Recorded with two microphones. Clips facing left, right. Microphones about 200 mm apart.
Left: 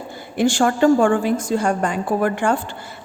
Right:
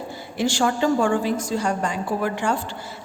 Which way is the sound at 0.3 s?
55° left (ahead or behind).